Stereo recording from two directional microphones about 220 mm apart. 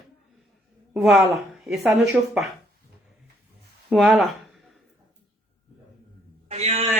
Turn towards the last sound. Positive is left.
turn(degrees=-30)  # may be behind; listen again after turning